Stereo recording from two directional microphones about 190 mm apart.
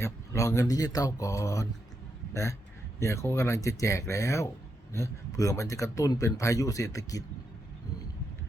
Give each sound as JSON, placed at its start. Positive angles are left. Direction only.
{"t": 0.0, "sound": "speech", "side_deg": 15}